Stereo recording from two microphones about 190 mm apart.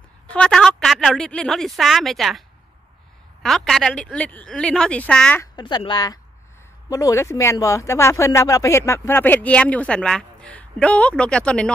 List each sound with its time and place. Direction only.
0.3 s a woman's voice: 5° left (ahead or behind)
3.4 s speech: centre (ahead or behind)
5.4 s speech: 25° left (ahead or behind); by 11.7 s 5° left (ahead or behind)